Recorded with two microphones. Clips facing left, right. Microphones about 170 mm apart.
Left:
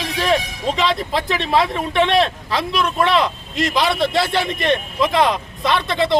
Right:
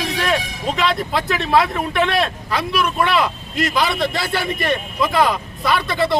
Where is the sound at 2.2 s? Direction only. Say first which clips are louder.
Even; 5° right (ahead or behind).